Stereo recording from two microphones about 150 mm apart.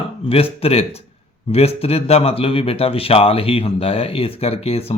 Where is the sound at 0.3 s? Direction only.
40° left (ahead or behind).